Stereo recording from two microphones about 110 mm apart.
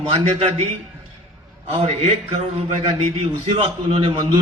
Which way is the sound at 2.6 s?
60° right (ahead or behind).